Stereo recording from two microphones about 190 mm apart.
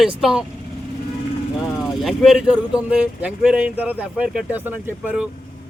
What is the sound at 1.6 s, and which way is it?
Speech, centre (ahead or behind).